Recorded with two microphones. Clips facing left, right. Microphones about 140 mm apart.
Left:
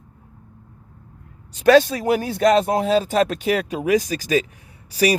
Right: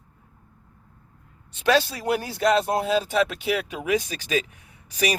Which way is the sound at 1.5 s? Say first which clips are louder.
Left 8 dB; 50° left (ahead or behind).